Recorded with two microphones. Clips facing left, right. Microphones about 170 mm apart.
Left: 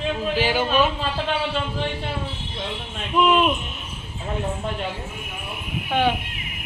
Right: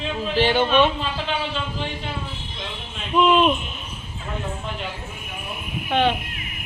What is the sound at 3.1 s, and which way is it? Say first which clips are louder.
Speech: right 2 dB; 5° left (ahead or behind).